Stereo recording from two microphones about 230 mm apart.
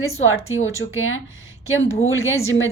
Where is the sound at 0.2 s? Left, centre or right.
Left.